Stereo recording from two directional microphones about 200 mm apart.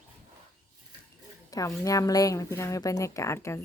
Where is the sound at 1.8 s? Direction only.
15° left (ahead or behind).